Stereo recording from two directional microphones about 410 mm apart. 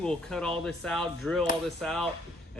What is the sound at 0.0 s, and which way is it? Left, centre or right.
Speech, centre.